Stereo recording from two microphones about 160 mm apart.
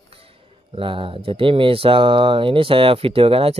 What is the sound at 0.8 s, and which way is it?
A man's voice, 35° right (ahead or behind).